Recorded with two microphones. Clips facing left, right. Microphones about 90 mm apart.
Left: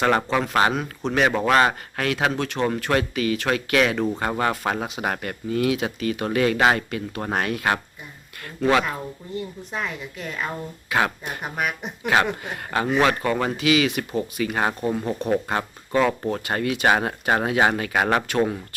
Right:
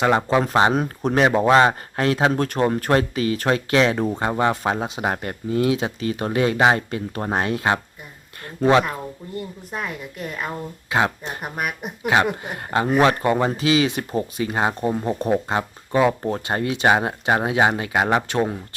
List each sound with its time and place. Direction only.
0.0 s speech: 20° right (ahead or behind)
0.7 s speech: 40° right (ahead or behind)
1.3 s speech: 20° right (ahead or behind)
9.4 s speech: 5° right (ahead or behind)
10.8 s speech: 20° right (ahead or behind)
11.4 s speech: 5° right (ahead or behind)
12.0 s speech: 20° right (ahead or behind)
16.2 s speech: 25° right (ahead or behind)